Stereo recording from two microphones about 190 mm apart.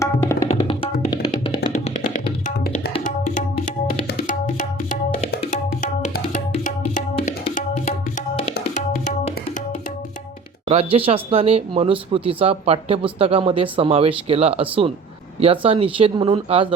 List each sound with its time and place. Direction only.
0.0 s tabla: 15° left (ahead or behind)
0.4 s music: 30° left (ahead or behind)
2.6 s tabla: 50° left (ahead or behind)
3.0 s tabla: 40° left (ahead or behind)
4.0 s music: 45° left (ahead or behind)
10.7 s speech: 30° right (ahead or behind)